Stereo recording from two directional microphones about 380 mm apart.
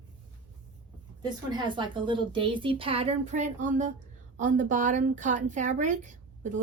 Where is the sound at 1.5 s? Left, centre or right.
Centre.